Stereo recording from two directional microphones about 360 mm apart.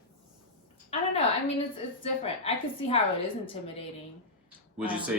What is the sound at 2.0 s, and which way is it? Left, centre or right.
Speech, centre.